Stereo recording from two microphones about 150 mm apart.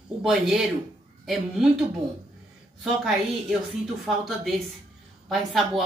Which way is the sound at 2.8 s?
Centre (ahead or behind).